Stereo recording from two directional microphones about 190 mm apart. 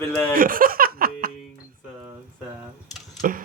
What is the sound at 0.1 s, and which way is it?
Speech, 10° left (ahead or behind).